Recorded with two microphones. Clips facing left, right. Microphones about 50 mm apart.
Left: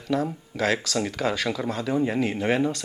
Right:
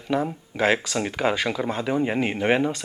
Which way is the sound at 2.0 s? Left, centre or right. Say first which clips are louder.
Right 2 dB; right.